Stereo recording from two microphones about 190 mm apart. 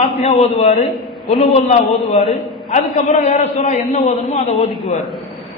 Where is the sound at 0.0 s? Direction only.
35° left (ahead or behind).